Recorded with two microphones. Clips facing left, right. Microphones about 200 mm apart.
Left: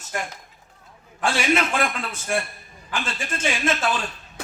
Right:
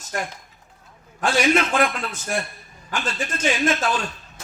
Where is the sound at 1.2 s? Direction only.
45° right (ahead or behind).